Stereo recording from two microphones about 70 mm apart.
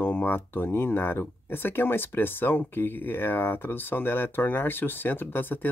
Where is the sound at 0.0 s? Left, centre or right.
Left.